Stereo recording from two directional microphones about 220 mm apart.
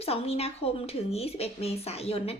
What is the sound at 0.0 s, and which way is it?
A woman's voice, 25° left (ahead or behind).